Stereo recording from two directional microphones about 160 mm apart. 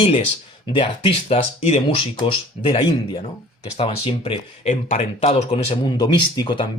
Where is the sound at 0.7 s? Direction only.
30° left (ahead or behind).